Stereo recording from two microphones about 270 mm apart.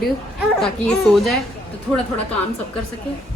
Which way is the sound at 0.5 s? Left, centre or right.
Centre.